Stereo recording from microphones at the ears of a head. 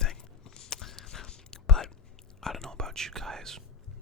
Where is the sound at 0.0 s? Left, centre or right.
Left.